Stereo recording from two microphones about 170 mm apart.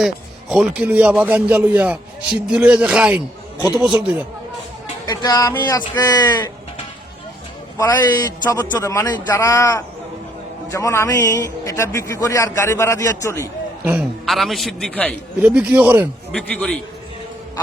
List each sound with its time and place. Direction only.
0.0 s a man's voice: 5° right (ahead or behind)
5.0 s speech: 25° left (ahead or behind)
7.8 s a man's voice: 20° left (ahead or behind)
14.3 s a man's voice: centre (ahead or behind)
15.4 s speech: 5° right (ahead or behind)
16.3 s a man's voice: 5° left (ahead or behind)